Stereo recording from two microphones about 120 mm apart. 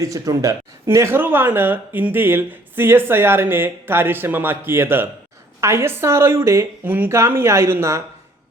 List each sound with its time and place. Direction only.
0.0 s speech: 25° right (ahead or behind)